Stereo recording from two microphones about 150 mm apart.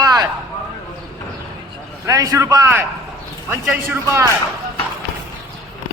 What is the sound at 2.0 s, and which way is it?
A man's voice, 20° right (ahead or behind).